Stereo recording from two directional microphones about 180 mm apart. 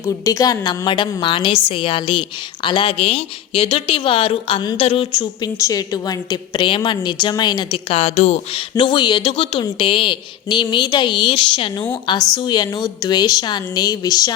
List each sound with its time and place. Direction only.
0.0 s a woman's voice: 20° left (ahead or behind); by 8.6 s 35° left (ahead or behind)
8.7 s a woman's voice: 25° left (ahead or behind)